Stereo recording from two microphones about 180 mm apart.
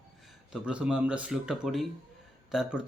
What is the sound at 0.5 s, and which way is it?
Speech, 5° right (ahead or behind).